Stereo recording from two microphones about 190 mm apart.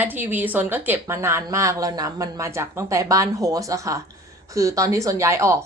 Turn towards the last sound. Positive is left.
turn(degrees=-15)  # may be behind; listen again after turning